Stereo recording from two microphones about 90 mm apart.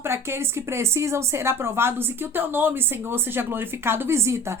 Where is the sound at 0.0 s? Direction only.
30° right (ahead or behind).